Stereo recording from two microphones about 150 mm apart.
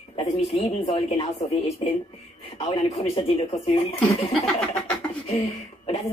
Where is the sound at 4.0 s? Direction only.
5° left (ahead or behind).